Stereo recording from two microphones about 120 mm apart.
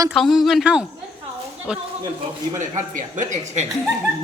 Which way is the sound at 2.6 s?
90° right.